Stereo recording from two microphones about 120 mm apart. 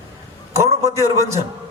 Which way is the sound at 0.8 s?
25° right (ahead or behind).